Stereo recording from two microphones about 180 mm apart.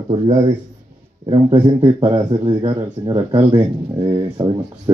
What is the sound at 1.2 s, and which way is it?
Speech, 25° right (ahead or behind).